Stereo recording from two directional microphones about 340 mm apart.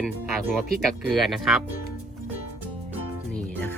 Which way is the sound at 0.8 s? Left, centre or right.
Centre.